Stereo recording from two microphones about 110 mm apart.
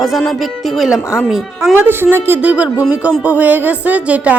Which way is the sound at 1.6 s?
20° right (ahead or behind).